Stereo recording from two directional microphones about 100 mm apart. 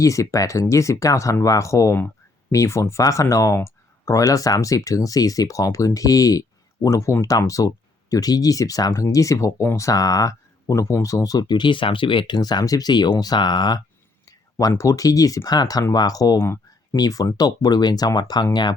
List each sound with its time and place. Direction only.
0.0 s speech: 30° left (ahead or behind); by 12.4 s 55° left (ahead or behind)
12.4 s speech: 40° left (ahead or behind)
14.7 s speech: 30° left (ahead or behind)